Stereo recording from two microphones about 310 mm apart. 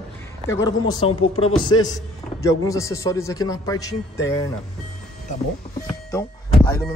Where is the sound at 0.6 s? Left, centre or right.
Centre.